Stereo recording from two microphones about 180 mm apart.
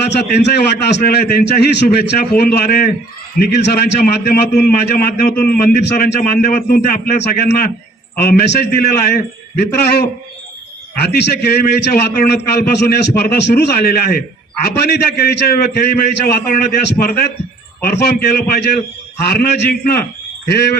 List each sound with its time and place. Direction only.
0.1 s a man's voice: 70° left (ahead or behind); by 16.6 s 50° left (ahead or behind)
17.8 s a man's voice: 55° left (ahead or behind)